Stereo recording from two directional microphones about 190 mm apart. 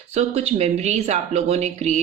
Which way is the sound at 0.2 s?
35° right (ahead or behind).